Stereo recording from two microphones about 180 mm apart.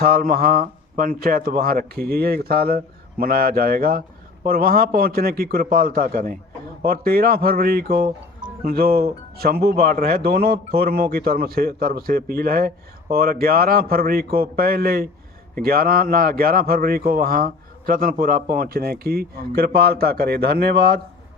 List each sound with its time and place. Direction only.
0.0 s speech: 55° right (ahead or behind)